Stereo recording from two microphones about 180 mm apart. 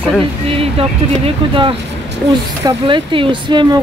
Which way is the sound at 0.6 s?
30° right (ahead or behind).